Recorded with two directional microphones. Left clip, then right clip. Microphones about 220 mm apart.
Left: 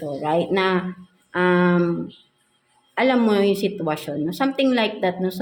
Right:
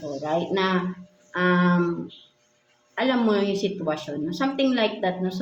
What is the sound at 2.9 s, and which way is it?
Speech, 40° left (ahead or behind).